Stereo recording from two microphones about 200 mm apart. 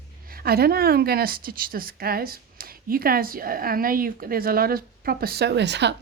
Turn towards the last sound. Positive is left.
turn(degrees=-60)  # may be behind; listen again after turning